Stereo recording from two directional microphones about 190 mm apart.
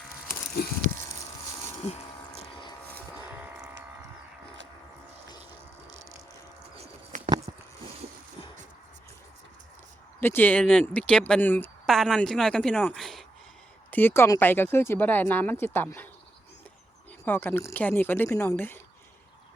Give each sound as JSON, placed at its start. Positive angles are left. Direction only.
{"t": 6.7, "sound": "bird", "side_deg": -35}
{"t": 10.2, "sound": "speech", "side_deg": 10}
{"t": 13.9, "sound": "speech", "side_deg": 10}
{"t": 17.2, "sound": "speech", "side_deg": 10}